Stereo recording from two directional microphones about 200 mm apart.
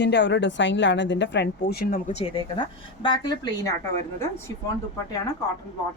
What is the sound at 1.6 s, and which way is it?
Speech, 50° left (ahead or behind).